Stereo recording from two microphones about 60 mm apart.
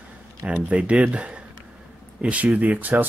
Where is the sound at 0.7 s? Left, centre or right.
Centre.